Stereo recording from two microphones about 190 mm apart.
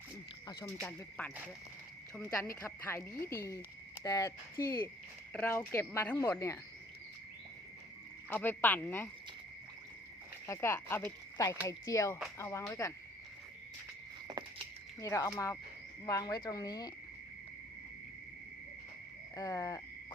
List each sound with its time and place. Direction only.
0.4 s speech: 15° left (ahead or behind)
5.3 s speech: 10° left (ahead or behind)
8.3 s speech: 10° left (ahead or behind)
10.4 s speech: 15° left (ahead or behind)
14.3 s patter: 20° right (ahead or behind)
15.0 s speech: 15° left (ahead or behind)
19.4 s speech: 15° left (ahead or behind)